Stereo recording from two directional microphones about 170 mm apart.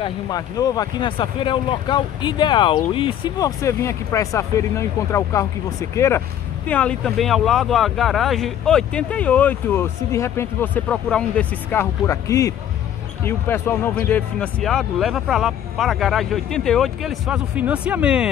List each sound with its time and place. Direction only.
0.0 s speech: 20° left (ahead or behind); by 18.3 s 5° right (ahead or behind)